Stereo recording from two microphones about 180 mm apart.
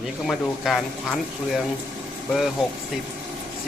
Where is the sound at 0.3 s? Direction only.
Centre (ahead or behind).